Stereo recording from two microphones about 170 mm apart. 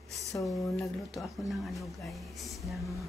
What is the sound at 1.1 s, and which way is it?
A woman's voice, centre (ahead or behind).